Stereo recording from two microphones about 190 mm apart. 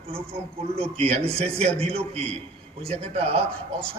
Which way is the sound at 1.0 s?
30° right (ahead or behind).